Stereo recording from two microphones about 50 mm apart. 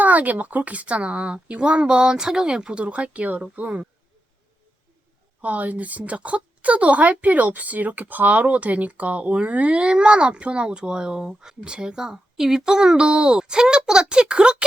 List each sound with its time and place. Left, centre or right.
0.0 s a woman's voice: right
5.4 s a woman's voice: right